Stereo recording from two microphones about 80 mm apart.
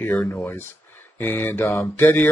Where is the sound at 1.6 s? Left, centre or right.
Left.